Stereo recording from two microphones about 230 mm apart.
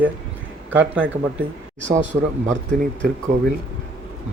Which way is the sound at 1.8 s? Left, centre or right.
Right.